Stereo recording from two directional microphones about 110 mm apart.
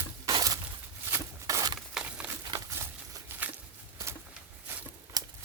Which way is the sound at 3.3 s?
20° right (ahead or behind).